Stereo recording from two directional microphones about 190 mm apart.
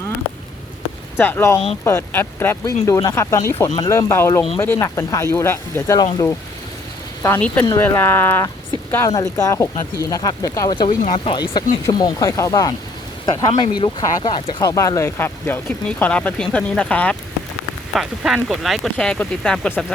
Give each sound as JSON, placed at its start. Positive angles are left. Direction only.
{"t": 1.2, "sound": "speech", "side_deg": 10}
{"t": 7.6, "sound": "speech", "side_deg": 20}
{"t": 11.0, "sound": "speech", "side_deg": 35}
{"t": 11.5, "sound": "speech", "side_deg": 20}